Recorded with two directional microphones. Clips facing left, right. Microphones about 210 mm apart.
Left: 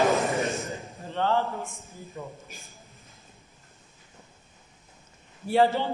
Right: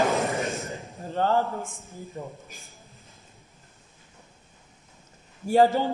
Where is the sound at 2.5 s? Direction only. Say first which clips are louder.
Left 1 dB; centre (ahead or behind).